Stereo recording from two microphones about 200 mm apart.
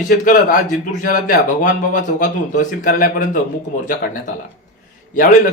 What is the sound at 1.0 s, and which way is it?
A man's voice, 45° left (ahead or behind).